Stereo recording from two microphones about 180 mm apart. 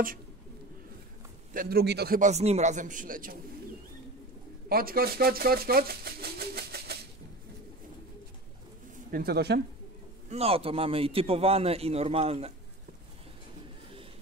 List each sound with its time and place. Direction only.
1.5 s a man's voice: 55° right (ahead or behind)
2.1 s a man's voice: 40° right (ahead or behind)
4.6 s speech: 55° right (ahead or behind)
8.9 s speech: 55° right (ahead or behind)
10.3 s a man's voice: 35° right (ahead or behind)